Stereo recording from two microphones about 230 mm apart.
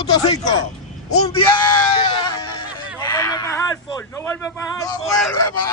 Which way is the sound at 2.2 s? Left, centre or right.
Centre.